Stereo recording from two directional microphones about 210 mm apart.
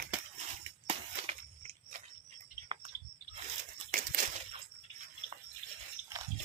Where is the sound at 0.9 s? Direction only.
30° right (ahead or behind).